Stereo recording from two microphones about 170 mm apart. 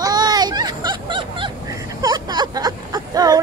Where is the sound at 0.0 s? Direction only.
20° right (ahead or behind).